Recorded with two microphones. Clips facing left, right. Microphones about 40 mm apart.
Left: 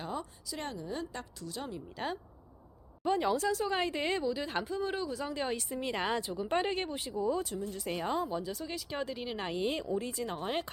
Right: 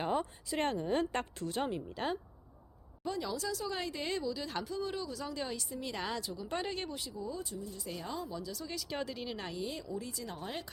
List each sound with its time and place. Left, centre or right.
0.0 s a woman's voice: right
3.1 s speech: left
7.1 s speech: left
8.9 s speech: centre
9.5 s speech: left